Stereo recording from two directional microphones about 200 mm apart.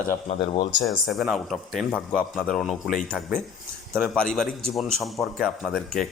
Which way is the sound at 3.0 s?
10° right (ahead or behind).